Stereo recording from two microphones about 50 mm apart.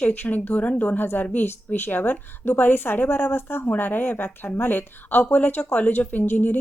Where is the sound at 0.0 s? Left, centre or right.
Left.